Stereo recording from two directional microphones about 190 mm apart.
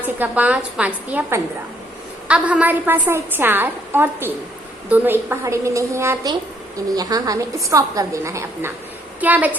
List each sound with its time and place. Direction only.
0.2 s a woman's voice: 5° right (ahead or behind)